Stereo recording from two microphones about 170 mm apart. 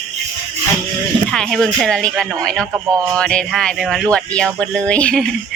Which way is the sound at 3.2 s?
5° left (ahead or behind).